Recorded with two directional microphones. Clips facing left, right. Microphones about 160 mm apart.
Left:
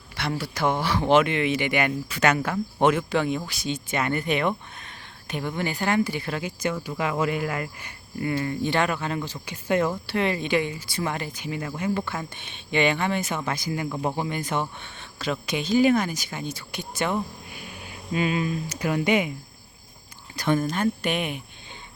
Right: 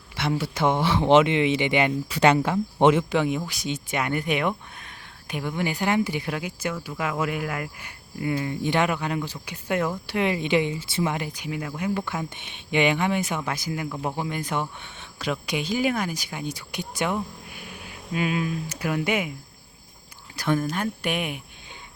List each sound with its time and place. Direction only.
0.2 s speech: 20° right (ahead or behind)
18.1 s speech: 5° right (ahead or behind)
20.3 s speech: 5° right (ahead or behind)